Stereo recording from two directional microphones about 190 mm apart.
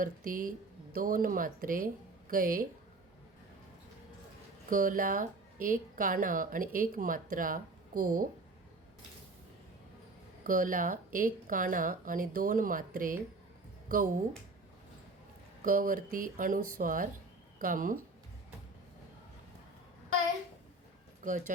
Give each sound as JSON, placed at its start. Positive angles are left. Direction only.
{"t": 0.0, "sound": "a woman's voice", "side_deg": -45}
{"t": 4.7, "sound": "a woman's voice", "side_deg": -45}
{"t": 10.4, "sound": "a woman's voice", "side_deg": -45}
{"t": 15.6, "sound": "a woman's voice", "side_deg": -45}
{"t": 21.2, "sound": "a woman's voice", "side_deg": -45}